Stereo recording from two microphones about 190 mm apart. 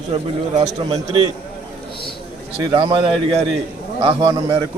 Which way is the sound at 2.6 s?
25° right (ahead or behind).